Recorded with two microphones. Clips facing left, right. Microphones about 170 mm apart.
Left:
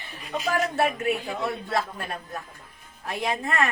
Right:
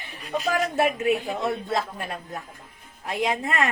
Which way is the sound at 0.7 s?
20° right (ahead or behind).